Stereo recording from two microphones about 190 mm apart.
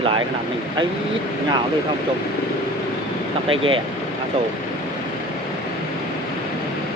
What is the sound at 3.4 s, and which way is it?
Speech, 30° right (ahead or behind).